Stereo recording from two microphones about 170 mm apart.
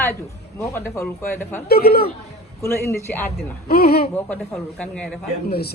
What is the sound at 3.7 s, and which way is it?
Speech, 70° left (ahead or behind).